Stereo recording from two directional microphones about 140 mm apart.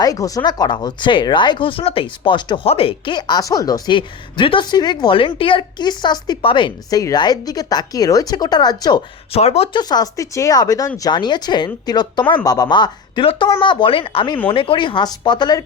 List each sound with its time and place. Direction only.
0.0 s speech: 25° left (ahead or behind)
9.3 s speech: 45° left (ahead or behind)
9.7 s speech: 25° left (ahead or behind)